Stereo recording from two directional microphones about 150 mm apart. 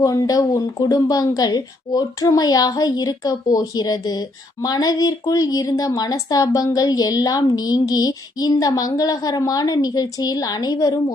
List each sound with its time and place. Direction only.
0.0 s a woman's voice: 25° left (ahead or behind)